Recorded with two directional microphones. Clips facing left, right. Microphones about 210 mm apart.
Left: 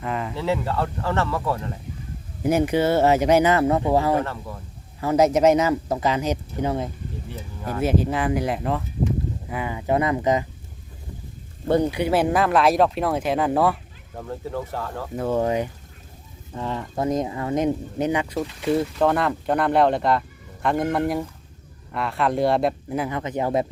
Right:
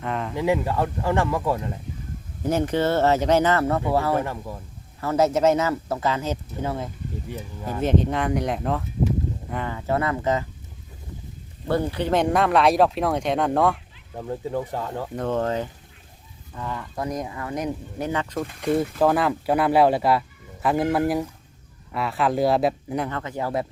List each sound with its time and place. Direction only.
0.0 s a sound: centre (ahead or behind)
0.3 s speech: 15° right (ahead or behind)
2.4 s speech: 10° left (ahead or behind)
4.2 s speech: 15° right (ahead or behind)
4.9 s speech: 15° left (ahead or behind)
7.3 s speech: 15° right (ahead or behind)
7.8 s speech: 5° left (ahead or behind)
11.7 s speech: 15° left (ahead or behind)
14.2 s speech: 15° right (ahead or behind)
15.1 s speech: 10° left (ahead or behind)
16.5 s speech: 25° left (ahead or behind)
18.6 s speech: centre (ahead or behind)
23.0 s speech: 15° left (ahead or behind)